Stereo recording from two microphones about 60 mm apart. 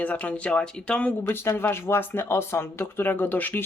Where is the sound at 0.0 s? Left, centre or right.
Left.